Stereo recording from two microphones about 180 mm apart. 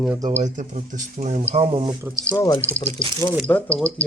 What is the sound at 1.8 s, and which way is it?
Speech, 20° right (ahead or behind).